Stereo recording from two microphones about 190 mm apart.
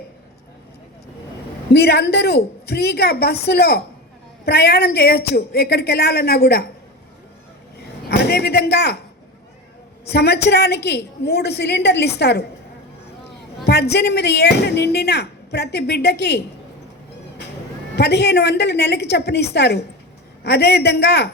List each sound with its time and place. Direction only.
1.7 s speech: 60° left (ahead or behind)
8.0 s speech: 55° left (ahead or behind)
10.1 s speech: 60° left (ahead or behind)
13.7 s speech: 60° left (ahead or behind)
17.9 s speech: 60° left (ahead or behind)